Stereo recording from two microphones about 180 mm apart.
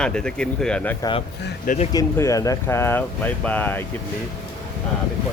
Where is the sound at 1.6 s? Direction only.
40° left (ahead or behind).